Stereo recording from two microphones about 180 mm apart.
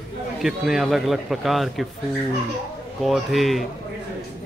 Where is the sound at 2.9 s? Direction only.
Centre (ahead or behind).